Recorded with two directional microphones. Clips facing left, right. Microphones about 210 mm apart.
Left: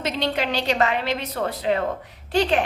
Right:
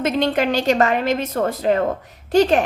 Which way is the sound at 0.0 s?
50° right (ahead or behind).